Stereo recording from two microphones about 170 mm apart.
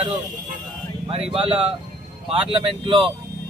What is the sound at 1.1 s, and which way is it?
Speech, 35° right (ahead or behind).